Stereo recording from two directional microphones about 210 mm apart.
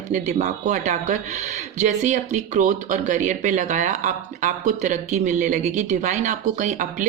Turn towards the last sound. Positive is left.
turn(degrees=-35)  # may be behind; listen again after turning